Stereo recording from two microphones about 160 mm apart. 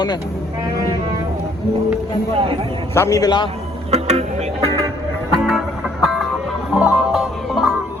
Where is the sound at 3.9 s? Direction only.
45° right (ahead or behind).